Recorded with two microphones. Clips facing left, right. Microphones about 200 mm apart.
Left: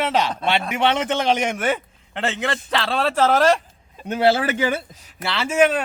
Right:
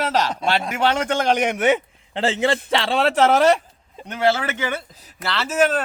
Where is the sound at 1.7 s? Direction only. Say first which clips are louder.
Right 4 dB; 25° right (ahead or behind).